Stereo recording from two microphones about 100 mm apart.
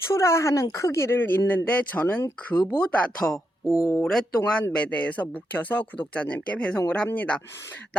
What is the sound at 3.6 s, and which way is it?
Speech, 25° left (ahead or behind).